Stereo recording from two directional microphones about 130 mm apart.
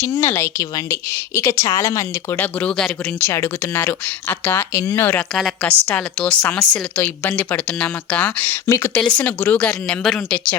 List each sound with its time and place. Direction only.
0.0 s a woman's voice: 20° left (ahead or behind)
2.3 s speech: 10° left (ahead or behind)
3.2 s speech: 20° left (ahead or behind)
5.3 s a woman's voice: centre (ahead or behind)